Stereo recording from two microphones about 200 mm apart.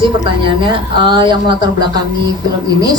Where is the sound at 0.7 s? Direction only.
25° right (ahead or behind).